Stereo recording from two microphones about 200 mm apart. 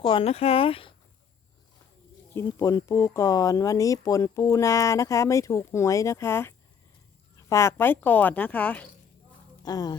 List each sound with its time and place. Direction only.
0.0 s speech: 25° left (ahead or behind)
2.3 s speech: 15° left (ahead or behind)
9.6 s speech: 20° left (ahead or behind)